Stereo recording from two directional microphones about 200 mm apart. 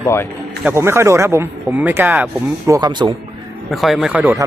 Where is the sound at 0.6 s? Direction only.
15° right (ahead or behind).